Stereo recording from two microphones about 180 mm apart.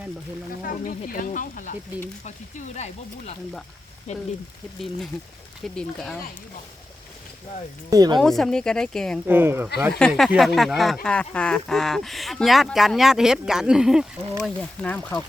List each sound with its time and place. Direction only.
0.6 s speech: 50° left (ahead or behind)
5.6 s speech: 5° left (ahead or behind)
7.9 s speech: 20° right (ahead or behind)
8.2 s speech: centre (ahead or behind)
9.2 s speech: 10° right (ahead or behind)
10.1 s speech: centre (ahead or behind)